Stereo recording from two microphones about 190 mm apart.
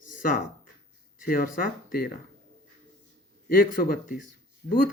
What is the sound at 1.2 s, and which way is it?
Speech, 45° left (ahead or behind).